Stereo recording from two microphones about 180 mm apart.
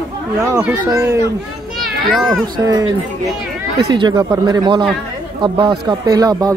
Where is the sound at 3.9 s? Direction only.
25° right (ahead or behind).